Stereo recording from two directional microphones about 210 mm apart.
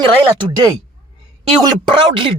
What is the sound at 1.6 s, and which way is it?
Speech, 25° right (ahead or behind).